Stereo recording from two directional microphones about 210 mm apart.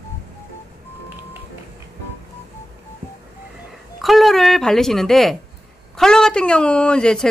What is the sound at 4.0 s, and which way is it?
Speech, centre (ahead or behind).